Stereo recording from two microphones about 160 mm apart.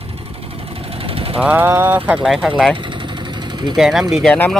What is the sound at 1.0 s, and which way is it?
Vehicle, 35° right (ahead or behind).